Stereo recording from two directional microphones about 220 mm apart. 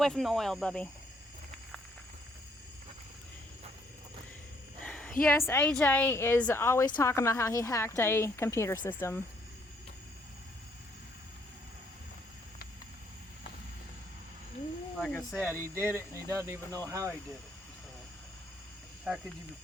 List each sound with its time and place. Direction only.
0.0 s speech: centre (ahead or behind)
4.8 s a sound: 5° left (ahead or behind)
5.4 s a woman's voice: 10° left (ahead or behind)
14.9 s speech: 5° left (ahead or behind)
15.6 s speech: 10° right (ahead or behind)
19.1 s speech: 5° right (ahead or behind)